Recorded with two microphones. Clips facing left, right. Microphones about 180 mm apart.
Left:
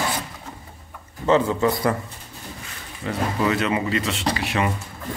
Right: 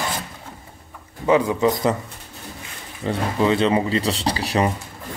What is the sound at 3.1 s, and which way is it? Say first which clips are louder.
Speech: right 3 dB; 30° right (ahead or behind).